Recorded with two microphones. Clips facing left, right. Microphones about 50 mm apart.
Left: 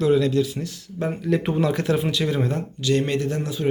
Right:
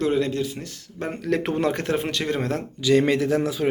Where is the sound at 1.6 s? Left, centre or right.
Right.